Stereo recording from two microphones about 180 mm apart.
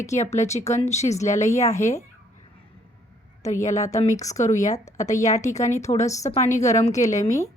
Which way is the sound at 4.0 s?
40° left (ahead or behind).